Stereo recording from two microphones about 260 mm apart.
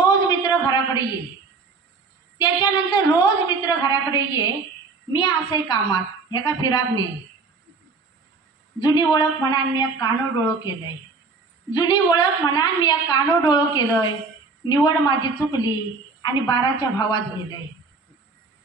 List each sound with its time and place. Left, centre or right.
0.0 s a sound: centre
2.3 s a woman's voice: centre
8.7 s a woman's voice: centre
11.7 s a woman's voice: centre